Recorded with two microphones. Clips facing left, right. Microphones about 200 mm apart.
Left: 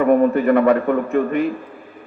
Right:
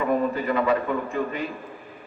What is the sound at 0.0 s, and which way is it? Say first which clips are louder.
A man's voice: left 9 dB; 60° left (ahead or behind).